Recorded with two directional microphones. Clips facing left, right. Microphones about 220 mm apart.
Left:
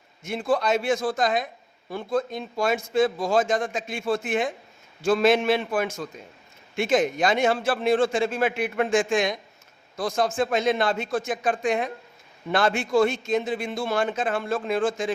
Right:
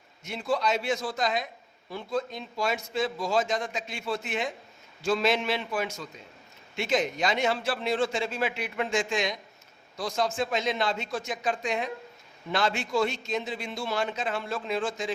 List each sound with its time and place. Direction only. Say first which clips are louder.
0.3 s a man's voice: left 4 dB; 50° left (ahead or behind)